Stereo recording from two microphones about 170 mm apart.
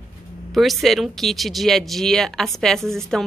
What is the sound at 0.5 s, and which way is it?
Speech, centre (ahead or behind).